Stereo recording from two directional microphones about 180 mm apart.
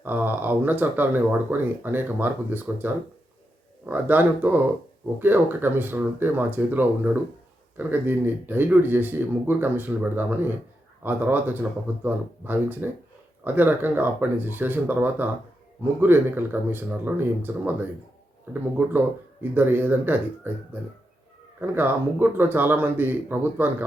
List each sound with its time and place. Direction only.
0.0 s speech: 10° right (ahead or behind)